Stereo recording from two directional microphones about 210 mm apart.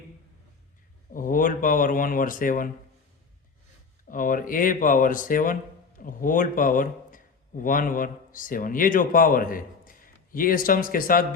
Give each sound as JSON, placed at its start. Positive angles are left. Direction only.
{"t": 1.1, "sound": "speech", "side_deg": 40}
{"t": 4.1, "sound": "a man's voice", "side_deg": 40}